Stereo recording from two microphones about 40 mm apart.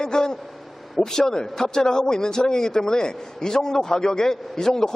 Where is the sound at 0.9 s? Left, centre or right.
Centre.